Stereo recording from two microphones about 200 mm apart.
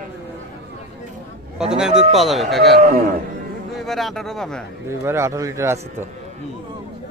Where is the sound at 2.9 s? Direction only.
50° right (ahead or behind).